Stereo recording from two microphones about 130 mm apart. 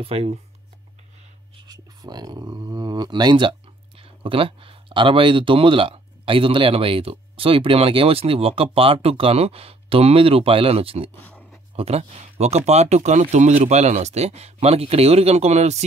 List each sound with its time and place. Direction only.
0.0 s speech: 50° right (ahead or behind)
1.7 s a sound: 30° right (ahead or behind)
4.0 s speech: 45° right (ahead or behind)